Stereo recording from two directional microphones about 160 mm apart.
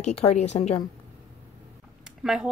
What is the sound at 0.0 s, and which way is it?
Speech, 40° left (ahead or behind).